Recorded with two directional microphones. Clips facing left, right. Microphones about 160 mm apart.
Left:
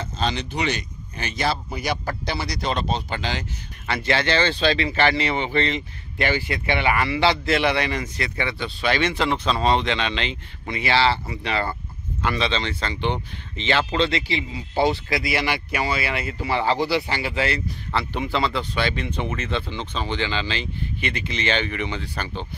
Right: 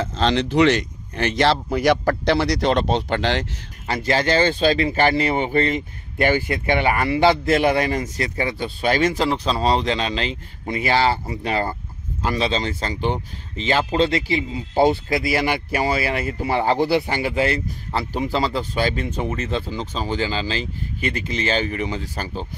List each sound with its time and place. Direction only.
0.0 s speech: 90° right; by 3.4 s 70° right (ahead or behind)
3.8 s speech: 40° right (ahead or behind)